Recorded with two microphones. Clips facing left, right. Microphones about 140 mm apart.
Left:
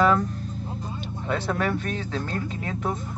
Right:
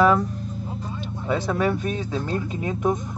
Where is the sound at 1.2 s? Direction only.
10° right (ahead or behind).